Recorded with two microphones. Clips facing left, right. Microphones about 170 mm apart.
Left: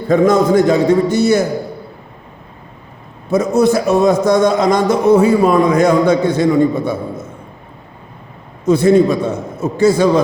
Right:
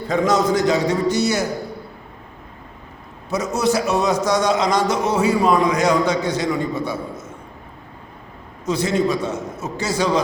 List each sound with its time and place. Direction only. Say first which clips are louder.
0.1 s a man's voice: left 7 dB; 55° left (ahead or behind)
3.3 s a man's voice: left 7 dB; 55° left (ahead or behind)
8.6 s a man's voice: left 9 dB; 55° left (ahead or behind)